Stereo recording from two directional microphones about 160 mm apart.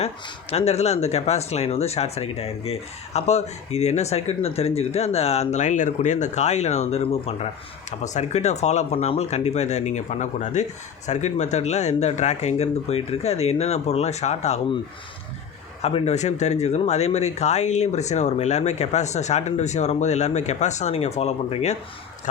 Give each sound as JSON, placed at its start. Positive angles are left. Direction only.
{"t": 0.5, "sound": "speech", "side_deg": 40}
{"t": 15.8, "sound": "speech", "side_deg": 40}